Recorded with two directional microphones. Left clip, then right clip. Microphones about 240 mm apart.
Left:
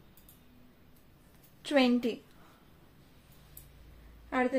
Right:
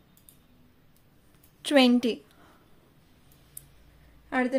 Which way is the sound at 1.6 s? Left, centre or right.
Right.